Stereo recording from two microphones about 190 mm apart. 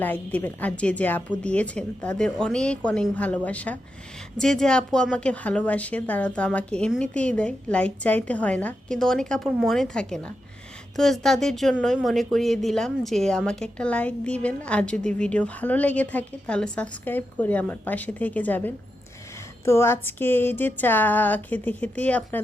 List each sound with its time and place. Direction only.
0.0 s a woman's voice: 10° left (ahead or behind)